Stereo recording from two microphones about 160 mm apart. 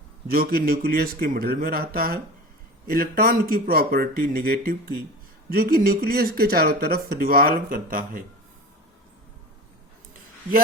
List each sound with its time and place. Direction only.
0.3 s speech: 70° right (ahead or behind)